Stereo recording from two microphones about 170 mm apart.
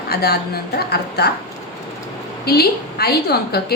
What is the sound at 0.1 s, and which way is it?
A woman's voice, 65° left (ahead or behind).